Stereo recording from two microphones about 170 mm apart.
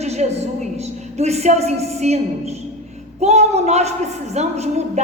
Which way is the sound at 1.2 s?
40° right (ahead or behind).